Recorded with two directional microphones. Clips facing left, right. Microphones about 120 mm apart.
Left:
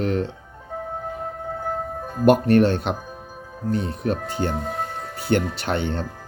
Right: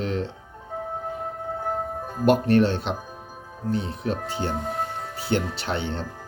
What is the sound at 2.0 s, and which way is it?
Music, 5° right (ahead or behind).